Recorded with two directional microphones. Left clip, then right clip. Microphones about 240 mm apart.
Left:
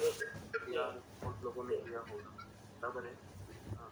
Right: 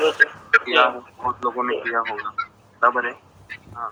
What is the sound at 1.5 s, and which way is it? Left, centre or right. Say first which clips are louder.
Speech: right 17 dB; right.